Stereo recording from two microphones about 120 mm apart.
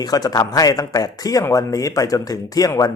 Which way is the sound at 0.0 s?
35° left (ahead or behind).